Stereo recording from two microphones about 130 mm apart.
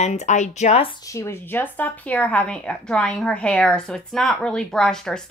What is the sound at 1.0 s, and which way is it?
A woman's voice, 25° left (ahead or behind).